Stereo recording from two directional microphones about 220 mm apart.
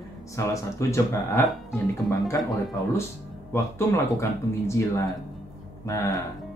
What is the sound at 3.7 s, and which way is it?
Speech, 10° left (ahead or behind).